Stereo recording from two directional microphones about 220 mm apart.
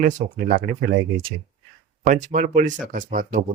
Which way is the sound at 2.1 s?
35° right (ahead or behind).